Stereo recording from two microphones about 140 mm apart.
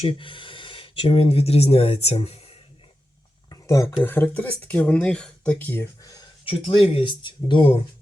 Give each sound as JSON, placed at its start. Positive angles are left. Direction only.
{"t": 0.0, "sound": "speech", "side_deg": 40}
{"t": 3.5, "sound": "a sound", "side_deg": 20}
{"t": 4.0, "sound": "speech", "side_deg": 15}
{"t": 6.4, "sound": "speech", "side_deg": 40}